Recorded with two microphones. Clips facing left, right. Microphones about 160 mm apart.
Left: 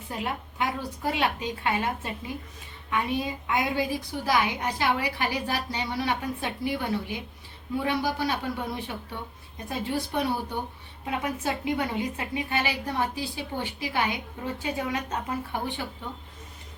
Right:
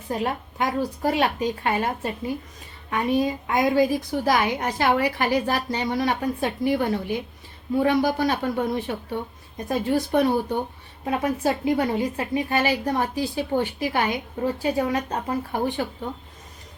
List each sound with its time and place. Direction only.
0.1 s a woman's voice: 40° right (ahead or behind)